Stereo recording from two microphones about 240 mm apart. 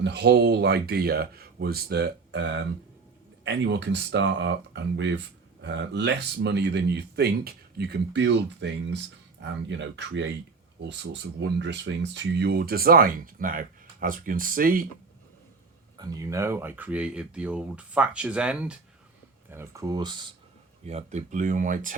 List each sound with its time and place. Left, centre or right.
0.0 s speech: right
16.0 s speech: centre; by 21.9 s right